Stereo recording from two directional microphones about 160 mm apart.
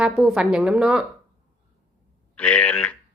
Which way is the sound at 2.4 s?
10° left (ahead or behind).